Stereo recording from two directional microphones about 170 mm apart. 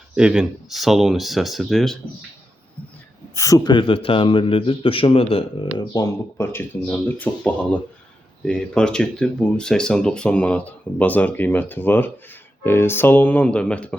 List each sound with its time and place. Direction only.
0.2 s speech: 5° right (ahead or behind)
3.3 s a man's voice: 20° left (ahead or behind)